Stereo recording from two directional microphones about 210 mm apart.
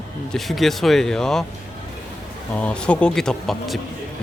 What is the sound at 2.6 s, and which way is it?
Speech, 5° left (ahead or behind).